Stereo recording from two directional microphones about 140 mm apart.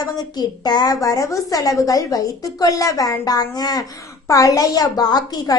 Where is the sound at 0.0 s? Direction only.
30° left (ahead or behind).